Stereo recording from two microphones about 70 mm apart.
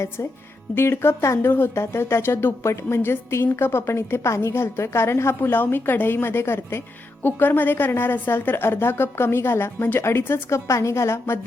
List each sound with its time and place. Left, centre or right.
0.8 s speech: left